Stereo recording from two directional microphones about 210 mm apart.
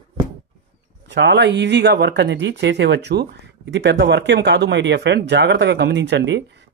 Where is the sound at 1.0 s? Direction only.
55° right (ahead or behind).